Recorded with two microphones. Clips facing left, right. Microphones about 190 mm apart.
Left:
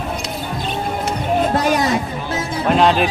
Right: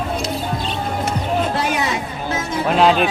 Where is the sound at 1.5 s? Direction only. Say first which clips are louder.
Left 4 dB; 40° left (ahead or behind).